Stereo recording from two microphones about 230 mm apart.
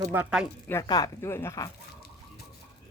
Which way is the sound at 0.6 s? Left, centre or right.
Centre.